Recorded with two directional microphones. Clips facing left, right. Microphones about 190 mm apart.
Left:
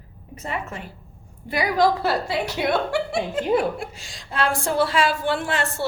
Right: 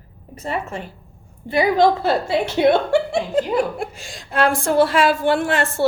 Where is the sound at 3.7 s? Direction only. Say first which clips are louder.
Right 5 dB; 50° right (ahead or behind).